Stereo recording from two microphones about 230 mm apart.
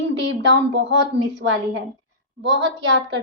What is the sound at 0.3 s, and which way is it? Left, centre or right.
A woman's voice, right.